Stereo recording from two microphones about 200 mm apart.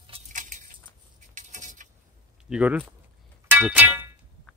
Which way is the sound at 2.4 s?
5° right (ahead or behind).